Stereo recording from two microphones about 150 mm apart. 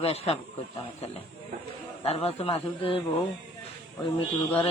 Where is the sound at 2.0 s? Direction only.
40° left (ahead or behind).